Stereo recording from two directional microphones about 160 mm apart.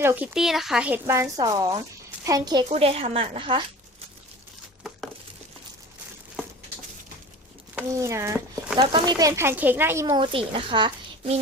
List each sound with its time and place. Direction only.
0.0 s speech: 15° right (ahead or behind)
0.3 s speech: centre (ahead or behind); by 2.6 s 25° right (ahead or behind)
2.6 s speech: 40° right (ahead or behind)
7.8 s speech: 20° right (ahead or behind)
10.3 s speech: 30° right (ahead or behind)